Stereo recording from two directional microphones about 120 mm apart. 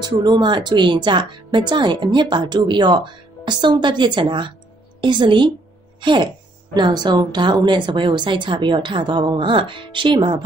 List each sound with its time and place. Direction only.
0.0 s speech: 35° right (ahead or behind)
5.9 s music: 40° right (ahead or behind)
6.7 s speech: 35° right (ahead or behind)